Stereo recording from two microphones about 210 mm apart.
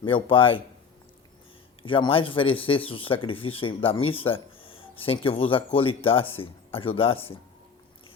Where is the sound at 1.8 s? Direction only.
25° left (ahead or behind).